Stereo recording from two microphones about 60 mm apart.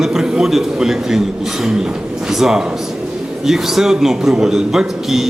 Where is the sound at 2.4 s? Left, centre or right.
Centre.